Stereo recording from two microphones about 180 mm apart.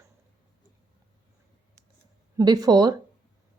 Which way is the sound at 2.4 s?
20° right (ahead or behind).